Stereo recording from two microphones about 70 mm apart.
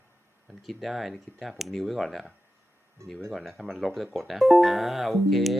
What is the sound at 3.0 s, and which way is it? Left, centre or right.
Speech, right.